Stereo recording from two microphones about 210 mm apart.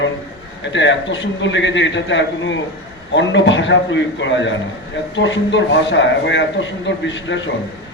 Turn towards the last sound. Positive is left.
turn(degrees=60)  # may be behind; listen again after turning